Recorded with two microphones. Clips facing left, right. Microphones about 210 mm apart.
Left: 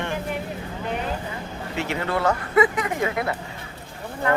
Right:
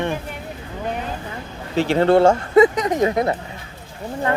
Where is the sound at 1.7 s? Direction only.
35° right (ahead or behind).